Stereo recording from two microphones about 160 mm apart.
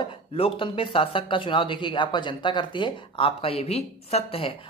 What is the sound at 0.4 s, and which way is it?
Speech, 35° left (ahead or behind).